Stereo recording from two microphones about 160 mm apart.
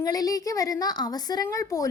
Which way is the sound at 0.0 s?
25° left (ahead or behind).